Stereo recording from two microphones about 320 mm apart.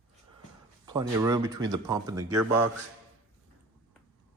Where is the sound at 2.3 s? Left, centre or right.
Right.